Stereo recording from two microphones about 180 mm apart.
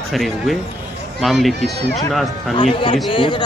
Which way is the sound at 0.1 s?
Centre (ahead or behind).